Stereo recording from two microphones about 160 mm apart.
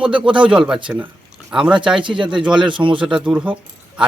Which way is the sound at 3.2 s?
10° right (ahead or behind).